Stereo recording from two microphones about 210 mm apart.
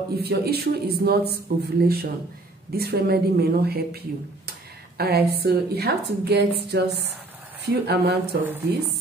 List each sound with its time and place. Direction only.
0.1 s a man's voice: 50° right (ahead or behind)